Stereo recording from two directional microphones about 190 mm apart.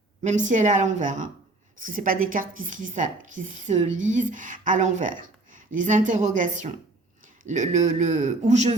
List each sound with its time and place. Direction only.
0.2 s a woman's voice: 40° right (ahead or behind)